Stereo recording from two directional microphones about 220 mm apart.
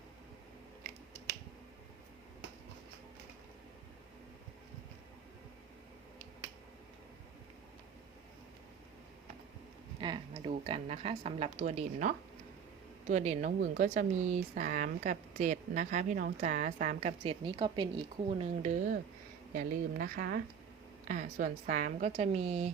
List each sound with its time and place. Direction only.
10.0 s a woman's voice: 20° right (ahead or behind)
19.5 s speech: 40° right (ahead or behind)